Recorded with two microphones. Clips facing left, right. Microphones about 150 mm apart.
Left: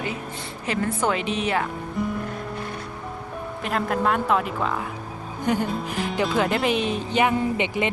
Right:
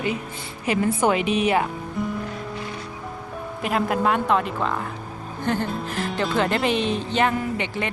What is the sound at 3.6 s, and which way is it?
Speech, 5° right (ahead or behind).